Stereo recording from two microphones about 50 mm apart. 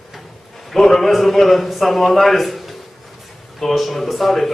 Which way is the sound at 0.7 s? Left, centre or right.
Centre.